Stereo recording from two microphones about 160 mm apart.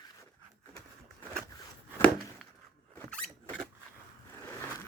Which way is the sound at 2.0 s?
10° left (ahead or behind).